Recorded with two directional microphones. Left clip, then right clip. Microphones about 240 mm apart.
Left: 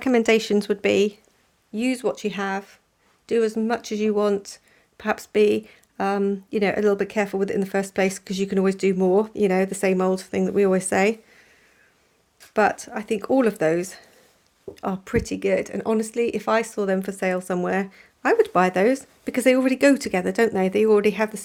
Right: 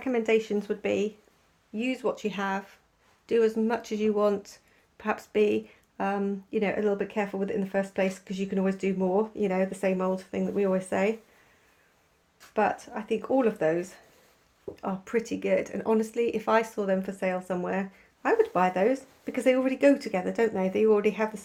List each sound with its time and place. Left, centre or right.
0.0 s speech: left
12.5 s speech: left